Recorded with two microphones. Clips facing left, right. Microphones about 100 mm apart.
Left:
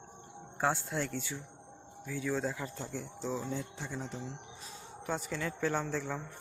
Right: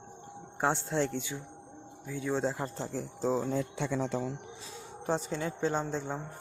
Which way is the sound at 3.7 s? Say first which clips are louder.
Right 9 dB; 85° right.